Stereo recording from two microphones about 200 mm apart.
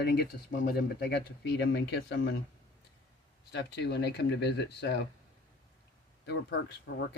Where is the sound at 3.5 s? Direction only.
55° left (ahead or behind).